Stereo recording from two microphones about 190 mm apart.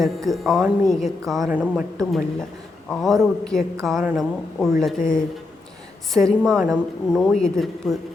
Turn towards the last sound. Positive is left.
turn(degrees=0)  # may be behind; listen again after turning